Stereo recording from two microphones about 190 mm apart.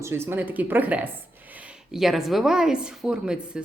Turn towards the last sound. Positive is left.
turn(degrees=-5)  # may be behind; listen again after turning